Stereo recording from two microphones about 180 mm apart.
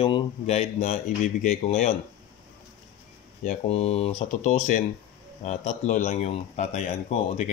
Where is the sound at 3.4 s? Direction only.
35° left (ahead or behind).